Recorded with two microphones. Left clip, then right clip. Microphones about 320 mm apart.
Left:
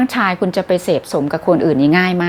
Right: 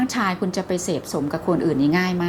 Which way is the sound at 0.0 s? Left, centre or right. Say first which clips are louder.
Left 7 dB; left.